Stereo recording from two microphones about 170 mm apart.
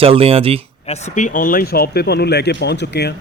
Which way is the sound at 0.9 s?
40° left (ahead or behind).